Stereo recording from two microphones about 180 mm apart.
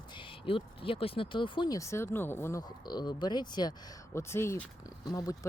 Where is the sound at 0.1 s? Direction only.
30° left (ahead or behind); by 5.1 s 10° left (ahead or behind).